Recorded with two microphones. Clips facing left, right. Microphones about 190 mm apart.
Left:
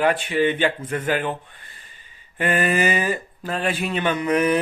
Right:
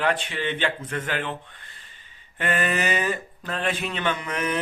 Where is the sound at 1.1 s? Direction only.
55° left (ahead or behind).